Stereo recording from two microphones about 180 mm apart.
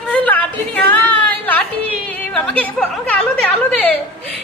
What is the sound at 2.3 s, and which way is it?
A woman's voice, 5° left (ahead or behind).